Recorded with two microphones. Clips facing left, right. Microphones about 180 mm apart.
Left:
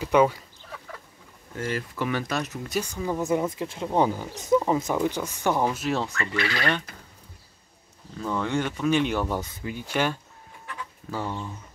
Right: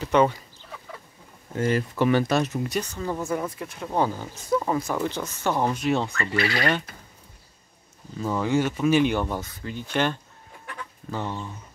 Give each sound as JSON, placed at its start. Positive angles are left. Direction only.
{"t": 0.0, "sound": "speech", "side_deg": 10}
{"t": 1.6, "sound": "speech", "side_deg": -25}
{"t": 2.7, "sound": "speech", "side_deg": 10}
{"t": 6.1, "sound": "fowl", "side_deg": -30}
{"t": 8.2, "sound": "speech", "side_deg": -5}
{"t": 9.4, "sound": "speech", "side_deg": 10}